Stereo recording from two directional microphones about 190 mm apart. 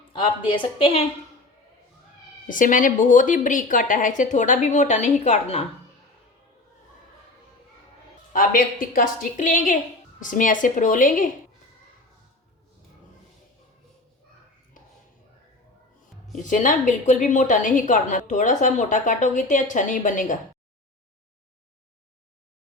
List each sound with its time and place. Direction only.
0.1 s a woman's voice: 25° left (ahead or behind)
2.5 s speech: 45° left (ahead or behind)
8.3 s speech: 50° left (ahead or behind)
16.3 s a woman's voice: 40° left (ahead or behind)